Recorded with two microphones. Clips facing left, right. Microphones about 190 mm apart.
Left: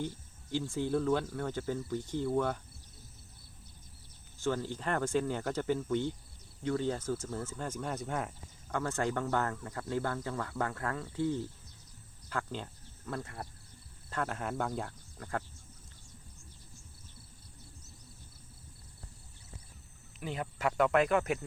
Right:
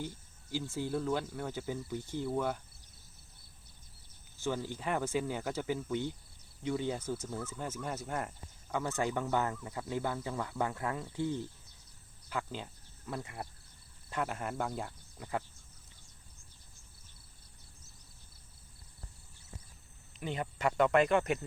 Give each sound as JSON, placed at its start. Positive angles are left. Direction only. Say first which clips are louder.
{"t": 0.5, "sound": "speech", "louder": "left 3 dB", "side_deg": -5}
{"t": 4.4, "sound": "speech", "louder": "left 2 dB", "side_deg": -10}
{"t": 7.2, "sound": "speech", "louder": "left 1 dB", "side_deg": 5}
{"t": 12.3, "sound": "speech", "louder": "left 1 dB", "side_deg": -5}
{"t": 20.1, "sound": "speech", "louder": "right 1 dB", "side_deg": 0}